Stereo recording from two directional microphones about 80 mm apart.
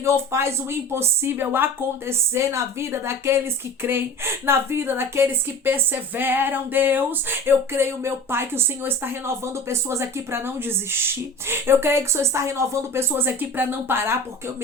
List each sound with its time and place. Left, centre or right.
0.0 s a woman's voice: right